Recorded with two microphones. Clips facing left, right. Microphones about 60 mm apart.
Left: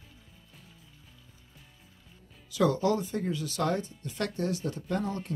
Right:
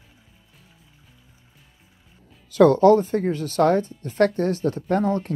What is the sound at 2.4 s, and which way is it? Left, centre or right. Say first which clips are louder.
Speech: right 12 dB; right.